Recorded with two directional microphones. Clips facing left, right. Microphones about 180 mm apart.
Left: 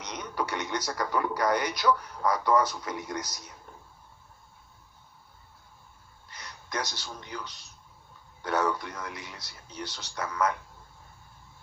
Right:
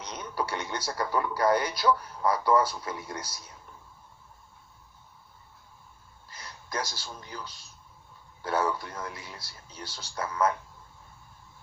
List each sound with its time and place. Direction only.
0.0 s a man's voice: 30° right (ahead or behind)
6.3 s a man's voice: 30° right (ahead or behind)